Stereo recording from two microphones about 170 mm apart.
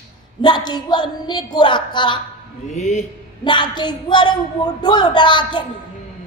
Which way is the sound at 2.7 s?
45° left (ahead or behind).